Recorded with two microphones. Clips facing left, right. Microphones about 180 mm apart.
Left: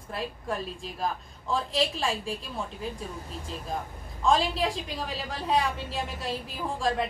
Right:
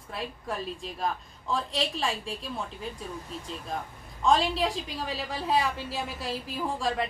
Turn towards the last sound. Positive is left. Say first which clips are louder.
# left 1 dB
turn(degrees=0)  # may be behind; listen again after turning